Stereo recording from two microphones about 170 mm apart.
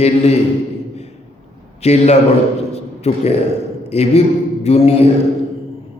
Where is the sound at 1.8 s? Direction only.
40° left (ahead or behind).